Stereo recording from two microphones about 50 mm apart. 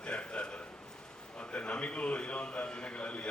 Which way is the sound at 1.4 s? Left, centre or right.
Left.